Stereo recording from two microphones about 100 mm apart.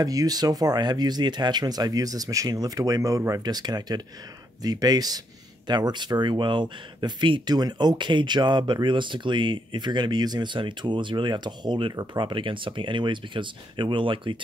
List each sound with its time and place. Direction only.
0.0 s speech: 40° right (ahead or behind); by 14.4 s 55° right (ahead or behind)